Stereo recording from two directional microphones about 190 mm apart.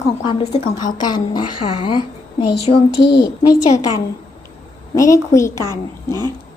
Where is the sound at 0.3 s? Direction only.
25° left (ahead or behind).